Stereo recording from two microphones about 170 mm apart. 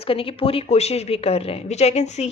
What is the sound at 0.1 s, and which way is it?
A woman's voice, 35° left (ahead or behind).